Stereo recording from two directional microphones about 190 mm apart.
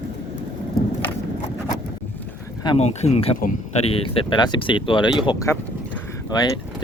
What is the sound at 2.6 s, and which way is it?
Speech, 35° left (ahead or behind).